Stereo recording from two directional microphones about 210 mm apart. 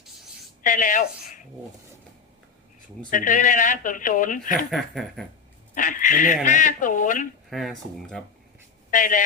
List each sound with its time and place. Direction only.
0.6 s speech: 40° left (ahead or behind)
3.1 s speech: 40° left (ahead or behind)
4.7 s speech: centre (ahead or behind)
5.7 s speech: 40° left (ahead or behind)
7.5 s speech: centre (ahead or behind)
8.9 s speech: 40° left (ahead or behind)